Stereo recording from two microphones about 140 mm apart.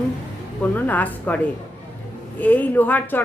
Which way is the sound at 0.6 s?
10° left (ahead or behind).